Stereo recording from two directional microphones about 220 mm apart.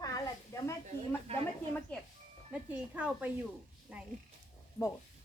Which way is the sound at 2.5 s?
5° right (ahead or behind).